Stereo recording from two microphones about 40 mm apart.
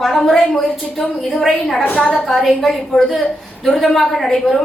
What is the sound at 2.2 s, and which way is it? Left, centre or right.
A woman's voice, centre.